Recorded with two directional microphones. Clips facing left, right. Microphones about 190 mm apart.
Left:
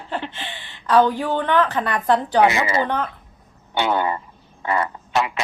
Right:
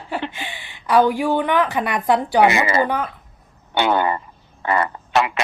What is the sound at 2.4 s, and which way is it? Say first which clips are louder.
Speech: right 2 dB; 70° right (ahead or behind).